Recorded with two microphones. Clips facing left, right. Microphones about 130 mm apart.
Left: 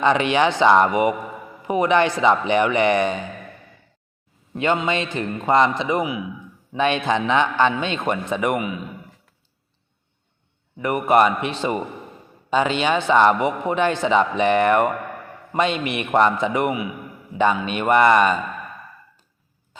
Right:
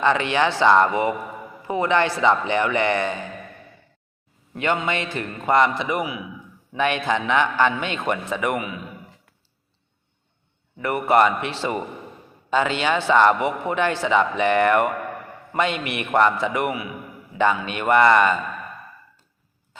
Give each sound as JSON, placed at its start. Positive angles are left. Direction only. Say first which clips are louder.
{"t": 0.0, "sound": "speech", "louder": "left 2 dB", "side_deg": 20}
{"t": 4.5, "sound": "a man's voice", "louder": "left 2 dB", "side_deg": 20}
{"t": 10.8, "sound": "a man's voice", "louder": "left 1 dB", "side_deg": 20}